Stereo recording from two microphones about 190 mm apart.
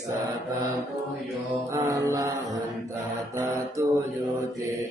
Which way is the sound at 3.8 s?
15° right (ahead or behind).